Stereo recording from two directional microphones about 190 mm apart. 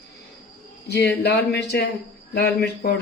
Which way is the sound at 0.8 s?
60° left (ahead or behind).